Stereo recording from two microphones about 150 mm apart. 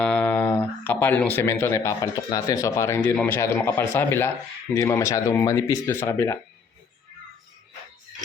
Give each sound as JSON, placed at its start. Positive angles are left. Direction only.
{"t": 0.0, "sound": "speech", "side_deg": 10}